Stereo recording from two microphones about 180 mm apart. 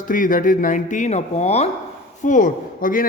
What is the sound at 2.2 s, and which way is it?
Speech, 45° left (ahead or behind).